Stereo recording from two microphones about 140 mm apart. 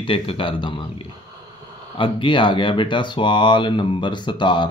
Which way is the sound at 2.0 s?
35° left (ahead or behind).